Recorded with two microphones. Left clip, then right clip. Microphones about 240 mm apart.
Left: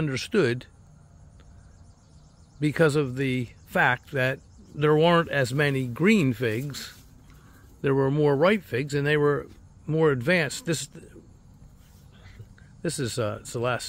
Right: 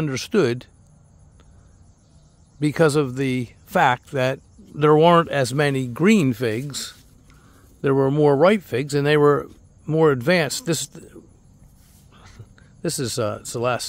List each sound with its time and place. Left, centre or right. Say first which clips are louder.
0.0 s speech: right 4 dB; centre
2.6 s speech: right 4 dB; centre
12.2 s speech: right 5 dB; right